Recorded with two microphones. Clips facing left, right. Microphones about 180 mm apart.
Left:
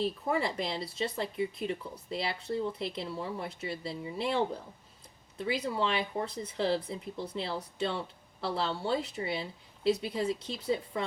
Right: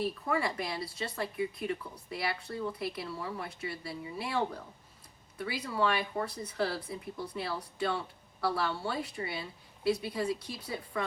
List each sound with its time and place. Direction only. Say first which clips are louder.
0.0 s speech: left 1 dB; 25° left (ahead or behind)